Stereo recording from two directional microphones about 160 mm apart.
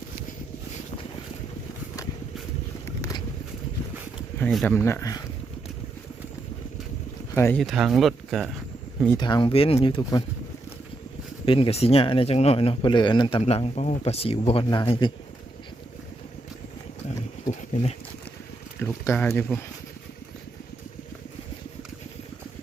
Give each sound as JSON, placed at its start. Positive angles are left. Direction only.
{"t": 4.5, "sound": "speech", "side_deg": 10}
{"t": 7.3, "sound": "speech", "side_deg": 15}
{"t": 7.6, "sound": "speech", "side_deg": 0}
{"t": 9.1, "sound": "speech", "side_deg": 25}
{"t": 11.4, "sound": "speech", "side_deg": 35}
{"t": 13.4, "sound": "speech", "side_deg": 40}
{"t": 17.4, "sound": "a sound", "side_deg": 45}
{"t": 18.8, "sound": "a sound", "side_deg": 15}